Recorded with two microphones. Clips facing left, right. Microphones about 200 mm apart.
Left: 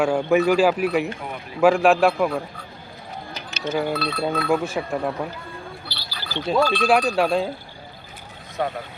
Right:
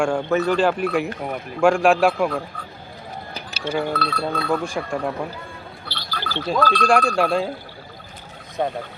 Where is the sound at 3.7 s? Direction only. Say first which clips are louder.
Even; 5° left (ahead or behind).